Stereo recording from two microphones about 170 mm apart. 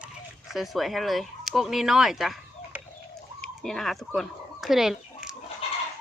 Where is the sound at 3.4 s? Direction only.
5° left (ahead or behind).